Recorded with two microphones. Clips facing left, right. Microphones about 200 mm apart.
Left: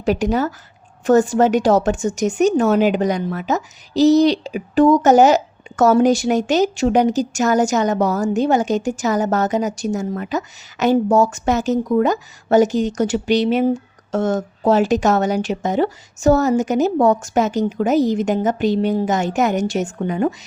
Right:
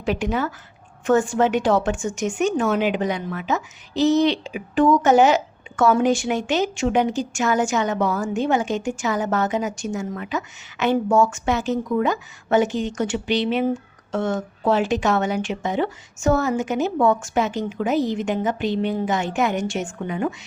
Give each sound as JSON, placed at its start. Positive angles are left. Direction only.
{"t": 0.0, "sound": "a woman's voice", "side_deg": 40}